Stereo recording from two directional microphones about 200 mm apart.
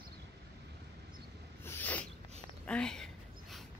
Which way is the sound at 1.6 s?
10° left (ahead or behind).